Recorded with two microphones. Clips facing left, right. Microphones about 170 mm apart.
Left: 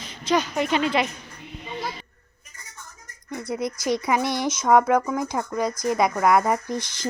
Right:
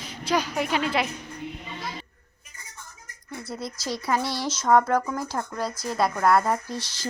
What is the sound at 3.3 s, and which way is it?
Speech, 20° left (ahead or behind).